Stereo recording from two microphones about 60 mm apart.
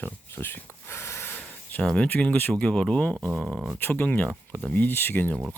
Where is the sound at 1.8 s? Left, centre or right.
Centre.